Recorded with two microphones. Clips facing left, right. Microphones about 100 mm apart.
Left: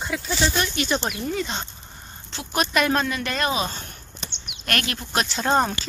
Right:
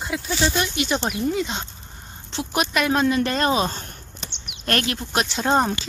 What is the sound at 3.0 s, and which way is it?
Speech, 30° right (ahead or behind).